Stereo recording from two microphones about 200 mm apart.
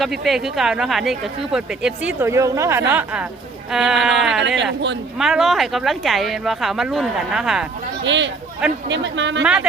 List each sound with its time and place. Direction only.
0.0 s speech: centre (ahead or behind)
3.7 s speech: centre (ahead or behind)
4.4 s speech: 60° right (ahead or behind)
5.2 s speech: centre (ahead or behind)
8.0 s speech: 65° right (ahead or behind)
9.4 s speech: 5° right (ahead or behind)